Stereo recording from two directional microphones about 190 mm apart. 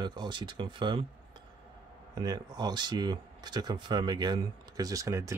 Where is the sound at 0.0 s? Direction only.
20° right (ahead or behind).